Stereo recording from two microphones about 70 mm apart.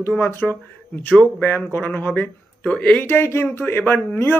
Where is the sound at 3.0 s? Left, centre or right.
Left.